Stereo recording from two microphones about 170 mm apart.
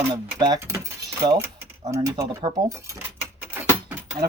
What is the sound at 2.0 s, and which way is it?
Speech, 20° right (ahead or behind).